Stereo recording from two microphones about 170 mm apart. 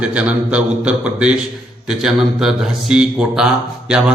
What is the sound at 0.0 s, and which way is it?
A man's voice, 5° right (ahead or behind).